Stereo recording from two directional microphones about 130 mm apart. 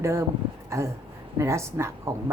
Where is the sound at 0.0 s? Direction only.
20° right (ahead or behind).